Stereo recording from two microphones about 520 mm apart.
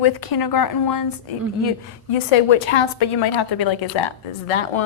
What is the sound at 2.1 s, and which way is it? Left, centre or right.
A woman's voice, left.